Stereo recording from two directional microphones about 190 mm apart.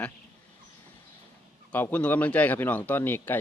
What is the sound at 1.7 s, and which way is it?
Speech, 10° left (ahead or behind).